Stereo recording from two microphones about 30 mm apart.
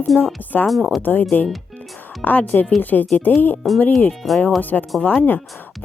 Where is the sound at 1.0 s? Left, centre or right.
Left.